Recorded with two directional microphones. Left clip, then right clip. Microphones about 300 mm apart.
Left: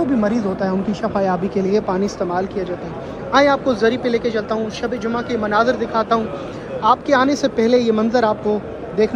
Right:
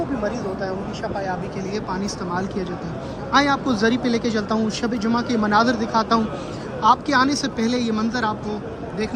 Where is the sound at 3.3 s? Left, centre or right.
Centre.